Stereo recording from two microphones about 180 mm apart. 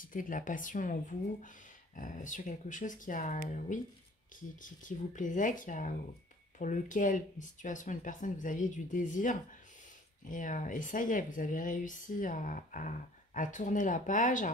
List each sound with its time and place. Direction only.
0.0 s speech: 50° left (ahead or behind)